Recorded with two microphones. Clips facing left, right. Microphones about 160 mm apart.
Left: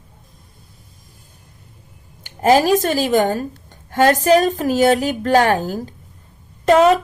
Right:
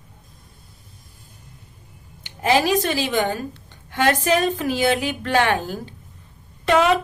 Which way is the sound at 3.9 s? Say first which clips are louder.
Left 6 dB; 40° left (ahead or behind).